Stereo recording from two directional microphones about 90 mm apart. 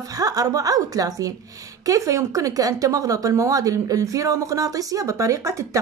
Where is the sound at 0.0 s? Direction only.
45° right (ahead or behind).